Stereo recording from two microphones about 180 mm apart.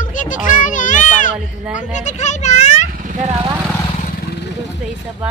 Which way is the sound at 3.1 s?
40° right (ahead or behind).